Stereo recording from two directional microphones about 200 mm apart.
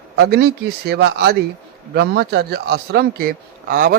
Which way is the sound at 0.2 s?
55° right (ahead or behind).